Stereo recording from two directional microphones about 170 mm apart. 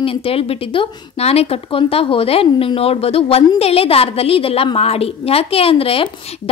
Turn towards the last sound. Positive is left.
turn(degrees=35)  # may be behind; listen again after turning